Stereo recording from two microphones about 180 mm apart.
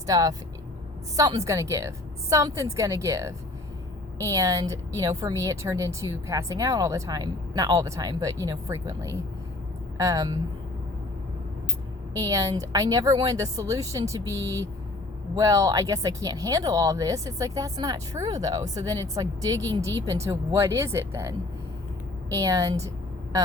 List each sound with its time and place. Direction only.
0.1 s a woman's voice: 20° right (ahead or behind)
12.1 s a woman's voice: 20° right (ahead or behind)